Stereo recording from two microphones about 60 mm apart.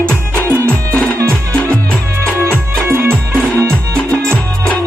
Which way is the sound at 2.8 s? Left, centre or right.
Right.